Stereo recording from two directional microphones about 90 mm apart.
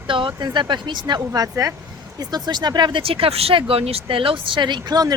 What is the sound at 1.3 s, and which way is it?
Speech, 40° right (ahead or behind).